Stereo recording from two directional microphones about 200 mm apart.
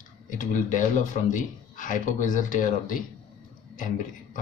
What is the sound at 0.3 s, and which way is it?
Speech, 40° left (ahead or behind).